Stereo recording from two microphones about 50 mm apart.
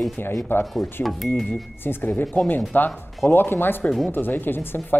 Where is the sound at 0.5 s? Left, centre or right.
Left.